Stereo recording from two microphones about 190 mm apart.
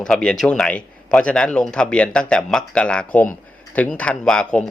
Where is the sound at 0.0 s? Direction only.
5° left (ahead or behind).